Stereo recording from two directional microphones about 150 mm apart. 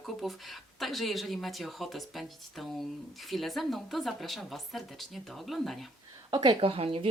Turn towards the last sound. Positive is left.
turn(degrees=-40)  # may be behind; listen again after turning